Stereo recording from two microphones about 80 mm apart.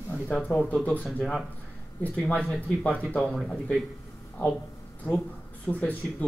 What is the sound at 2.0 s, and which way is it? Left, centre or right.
Speech, centre.